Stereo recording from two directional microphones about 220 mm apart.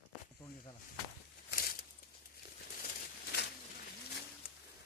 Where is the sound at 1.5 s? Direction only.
45° left (ahead or behind).